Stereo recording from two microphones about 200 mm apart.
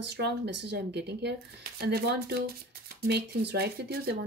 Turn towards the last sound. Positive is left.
turn(degrees=-55)  # may be behind; listen again after turning